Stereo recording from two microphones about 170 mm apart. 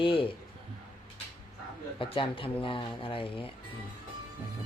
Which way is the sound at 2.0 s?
30° left (ahead or behind).